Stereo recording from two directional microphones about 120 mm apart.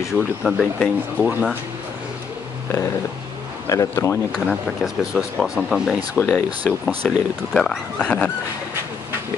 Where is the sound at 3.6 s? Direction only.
25° left (ahead or behind).